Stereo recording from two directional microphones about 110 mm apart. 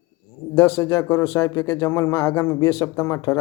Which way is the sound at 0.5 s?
25° left (ahead or behind).